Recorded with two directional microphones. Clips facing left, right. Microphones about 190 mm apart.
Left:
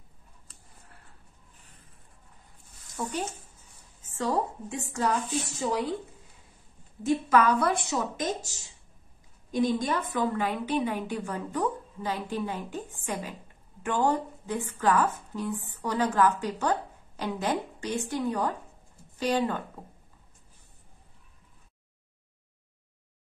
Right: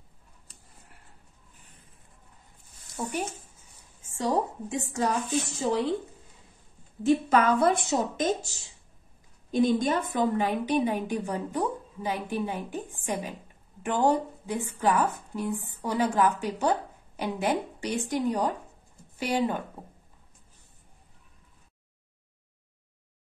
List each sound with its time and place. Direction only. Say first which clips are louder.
3.0 s a woman's voice: right 1 dB; 25° right (ahead or behind)
7.2 s a woman's voice: left 2 dB; 25° right (ahead or behind)
9.5 s a woman's voice: right 3 dB; 25° right (ahead or behind)